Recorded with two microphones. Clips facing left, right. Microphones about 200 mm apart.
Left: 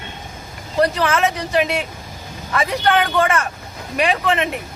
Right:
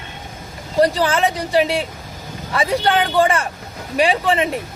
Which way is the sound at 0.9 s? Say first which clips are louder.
Right 1 dB; 30° right (ahead or behind).